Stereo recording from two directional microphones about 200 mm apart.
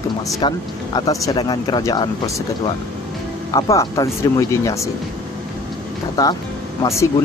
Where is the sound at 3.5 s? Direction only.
20° left (ahead or behind).